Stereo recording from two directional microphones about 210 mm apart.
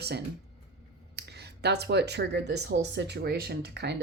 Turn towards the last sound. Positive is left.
turn(degrees=-55)  # may be behind; listen again after turning